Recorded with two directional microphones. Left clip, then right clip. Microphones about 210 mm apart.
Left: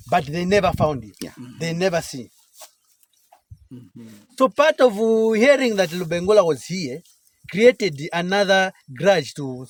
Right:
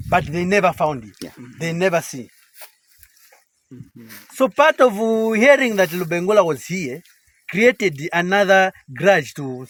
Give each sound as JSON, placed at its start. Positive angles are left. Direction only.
{"t": 0.1, "sound": "speech", "side_deg": 0}
{"t": 2.6, "sound": "a sound", "side_deg": -20}
{"t": 4.4, "sound": "speech", "side_deg": 0}